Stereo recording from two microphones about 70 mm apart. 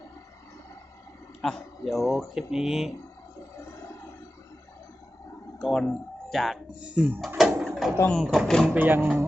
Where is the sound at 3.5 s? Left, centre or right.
Left.